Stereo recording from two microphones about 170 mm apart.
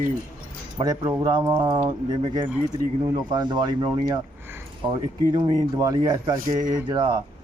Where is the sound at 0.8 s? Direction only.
20° right (ahead or behind).